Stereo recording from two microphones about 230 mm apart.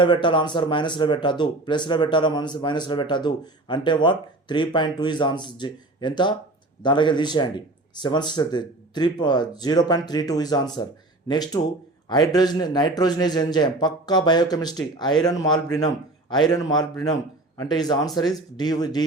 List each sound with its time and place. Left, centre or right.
0.0 s a man's voice: left